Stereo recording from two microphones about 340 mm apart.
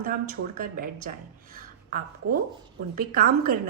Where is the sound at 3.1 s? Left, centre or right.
Right.